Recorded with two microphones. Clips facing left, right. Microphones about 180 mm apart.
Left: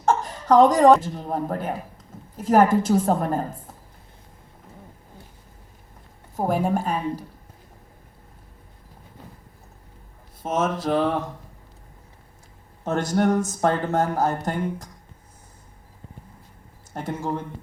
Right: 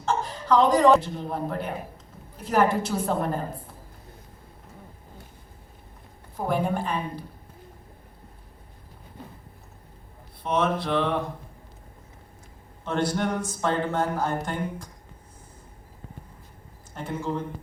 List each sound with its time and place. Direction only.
0.0 s speech: 50° left (ahead or behind)
6.3 s speech: 45° left (ahead or behind)
10.4 s speech: 45° left (ahead or behind)
12.8 s speech: 45° left (ahead or behind)
16.9 s speech: 45° left (ahead or behind)